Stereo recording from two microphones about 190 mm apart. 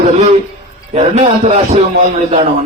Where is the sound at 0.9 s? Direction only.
30° right (ahead or behind).